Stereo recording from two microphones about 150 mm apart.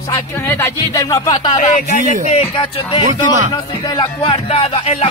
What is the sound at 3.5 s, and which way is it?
Speech, 30° left (ahead or behind).